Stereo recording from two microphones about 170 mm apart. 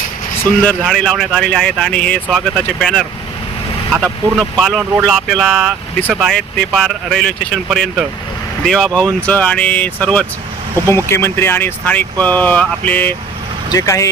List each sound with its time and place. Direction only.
0.6 s speech: 5° left (ahead or behind); by 14.1 s 20° left (ahead or behind)